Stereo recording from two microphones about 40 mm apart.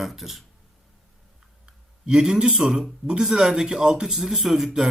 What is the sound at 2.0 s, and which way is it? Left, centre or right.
A man's voice, centre.